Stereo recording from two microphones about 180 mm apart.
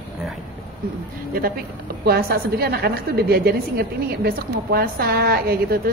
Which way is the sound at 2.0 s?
55° right (ahead or behind).